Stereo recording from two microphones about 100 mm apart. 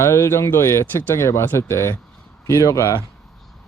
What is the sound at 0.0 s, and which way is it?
Speech, 25° left (ahead or behind).